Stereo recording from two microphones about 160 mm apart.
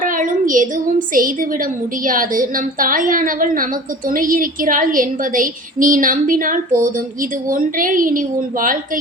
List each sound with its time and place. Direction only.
0.0 s a woman's voice: 55° right (ahead or behind)